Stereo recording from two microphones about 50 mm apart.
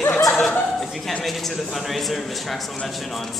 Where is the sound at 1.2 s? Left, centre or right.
Centre.